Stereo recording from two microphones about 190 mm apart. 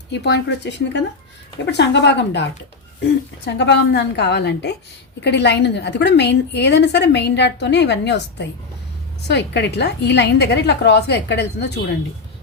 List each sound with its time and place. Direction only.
0.1 s a woman's voice: 60° left (ahead or behind)